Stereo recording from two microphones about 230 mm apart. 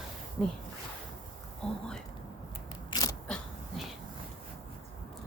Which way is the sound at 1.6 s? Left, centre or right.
Centre.